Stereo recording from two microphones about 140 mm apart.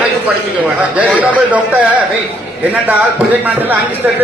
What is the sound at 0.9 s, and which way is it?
A man's voice, 10° right (ahead or behind).